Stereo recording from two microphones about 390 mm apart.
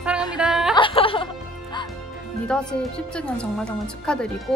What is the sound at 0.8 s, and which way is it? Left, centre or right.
Speech, centre.